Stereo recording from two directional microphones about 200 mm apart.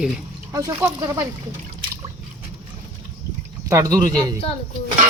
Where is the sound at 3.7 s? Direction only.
15° right (ahead or behind).